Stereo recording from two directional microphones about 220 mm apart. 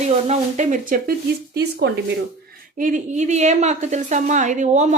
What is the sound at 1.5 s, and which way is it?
Speech, 50° right (ahead or behind).